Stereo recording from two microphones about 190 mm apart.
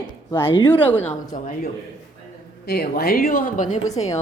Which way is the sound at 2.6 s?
55° left (ahead or behind).